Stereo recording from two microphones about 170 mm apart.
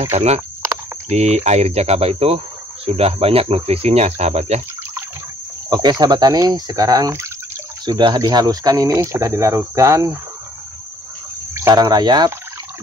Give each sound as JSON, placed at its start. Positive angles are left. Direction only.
{"t": 0.0, "sound": "speech", "side_deg": -40}
{"t": 5.7, "sound": "speech", "side_deg": -25}
{"t": 11.5, "sound": "speech", "side_deg": -20}